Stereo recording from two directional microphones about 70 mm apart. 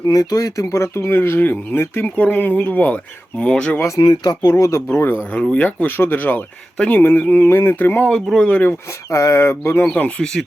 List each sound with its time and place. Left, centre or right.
0.0 s speech: left; by 3.8 s centre
3.8 s speech: left
4.0 s speech: left
4.9 s speech: left
5.3 s speech: centre
8.1 s speech: centre
8.4 s speech: left
9.0 s speech: left
9.8 s speech: left